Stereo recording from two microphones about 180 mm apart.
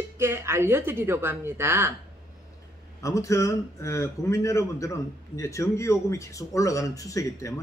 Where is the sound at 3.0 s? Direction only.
15° left (ahead or behind).